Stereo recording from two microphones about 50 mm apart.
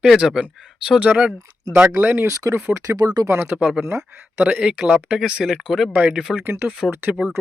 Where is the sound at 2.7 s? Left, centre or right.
Right.